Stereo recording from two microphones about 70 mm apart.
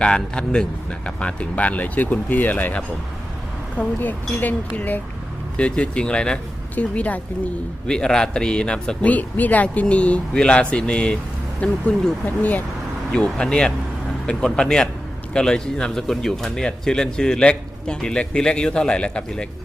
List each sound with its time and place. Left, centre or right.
0.0 s speech: centre
5.5 s speech: centre
7.9 s speech: centre
13.1 s speech: centre